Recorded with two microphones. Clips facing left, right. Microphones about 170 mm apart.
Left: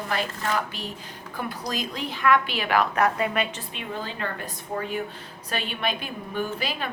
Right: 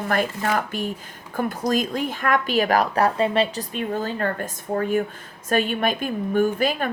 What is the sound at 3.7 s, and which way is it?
A woman's voice, 45° right (ahead or behind).